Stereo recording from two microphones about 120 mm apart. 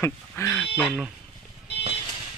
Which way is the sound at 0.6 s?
Centre (ahead or behind).